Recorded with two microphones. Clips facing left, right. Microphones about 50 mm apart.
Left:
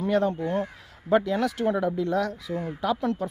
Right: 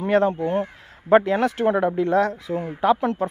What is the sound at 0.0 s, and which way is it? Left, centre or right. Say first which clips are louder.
Speech: right 5 dB; right.